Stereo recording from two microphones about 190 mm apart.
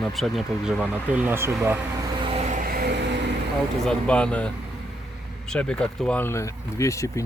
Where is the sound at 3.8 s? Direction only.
5° left (ahead or behind).